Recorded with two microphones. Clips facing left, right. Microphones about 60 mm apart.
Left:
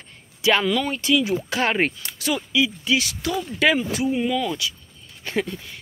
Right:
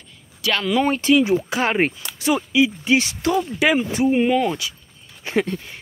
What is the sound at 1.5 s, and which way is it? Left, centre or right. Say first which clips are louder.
Speech: right 2 dB; centre.